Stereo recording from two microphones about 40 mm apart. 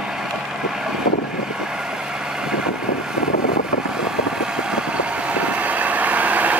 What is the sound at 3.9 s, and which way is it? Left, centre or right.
Vehicle, centre.